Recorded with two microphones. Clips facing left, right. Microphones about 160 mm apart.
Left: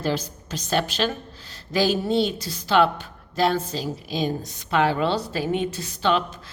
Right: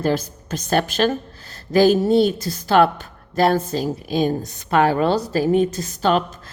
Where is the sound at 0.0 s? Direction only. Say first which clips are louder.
Right 5 dB; 50° right (ahead or behind).